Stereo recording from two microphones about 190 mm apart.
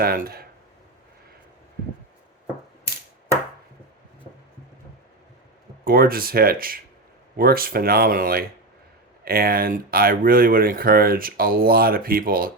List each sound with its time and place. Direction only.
0.0 s speech: 50° right (ahead or behind)
5.8 s speech: 50° right (ahead or behind)